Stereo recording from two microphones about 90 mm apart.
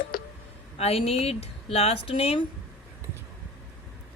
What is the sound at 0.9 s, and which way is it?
Speech, 90° left.